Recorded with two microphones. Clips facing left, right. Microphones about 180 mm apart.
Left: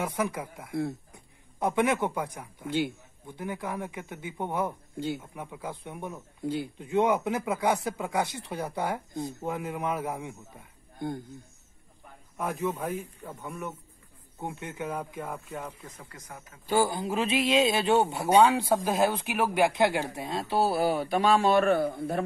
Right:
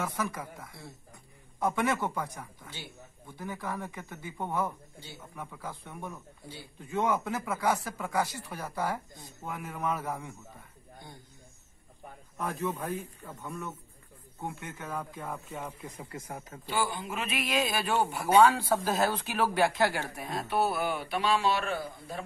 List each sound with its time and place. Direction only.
0.0 s a man's voice: 15° left (ahead or behind)
12.4 s a man's voice: 10° left (ahead or behind)
15.3 s speech: centre (ahead or behind)
15.8 s speech: 10° right (ahead or behind)
16.3 s speech: 30° right (ahead or behind)
16.6 s speech: 45° left (ahead or behind); by 22.2 s 60° left (ahead or behind)